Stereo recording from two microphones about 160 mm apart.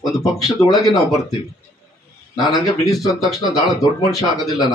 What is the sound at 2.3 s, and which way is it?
Speech, 20° left (ahead or behind).